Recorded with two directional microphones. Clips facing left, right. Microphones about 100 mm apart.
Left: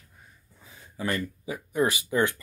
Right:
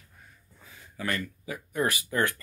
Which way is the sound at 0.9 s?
25° left (ahead or behind).